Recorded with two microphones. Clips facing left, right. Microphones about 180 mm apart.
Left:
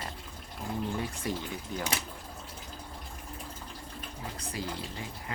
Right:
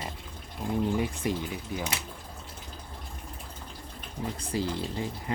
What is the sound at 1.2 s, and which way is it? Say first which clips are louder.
Speech: right 2 dB; 15° right (ahead or behind).